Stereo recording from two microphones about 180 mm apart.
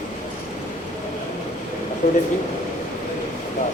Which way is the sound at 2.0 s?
45° left (ahead or behind).